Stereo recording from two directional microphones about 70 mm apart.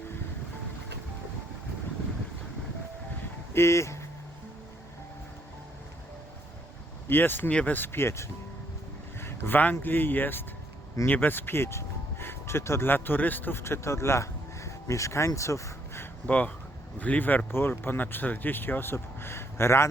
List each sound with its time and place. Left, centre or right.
3.5 s speech: left
7.1 s speech: left
15.4 s a sound: left
16.2 s speech: centre; by 19.9 s left